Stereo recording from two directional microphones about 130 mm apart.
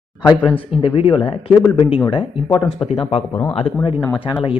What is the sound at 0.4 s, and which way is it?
Speech, 40° left (ahead or behind).